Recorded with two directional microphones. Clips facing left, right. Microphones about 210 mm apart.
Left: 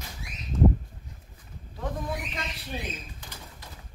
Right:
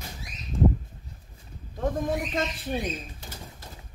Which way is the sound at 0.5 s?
15° right (ahead or behind).